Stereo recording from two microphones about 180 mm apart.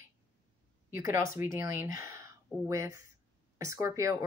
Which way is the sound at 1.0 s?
15° right (ahead or behind).